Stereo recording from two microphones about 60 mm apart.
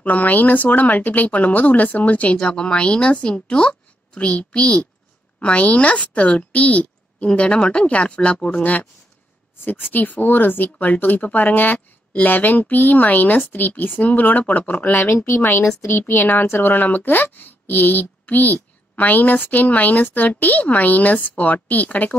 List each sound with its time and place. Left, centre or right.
0.0 s speech: left
2.3 s a woman's voice: centre
9.7 s speech: left
15.0 s speech: left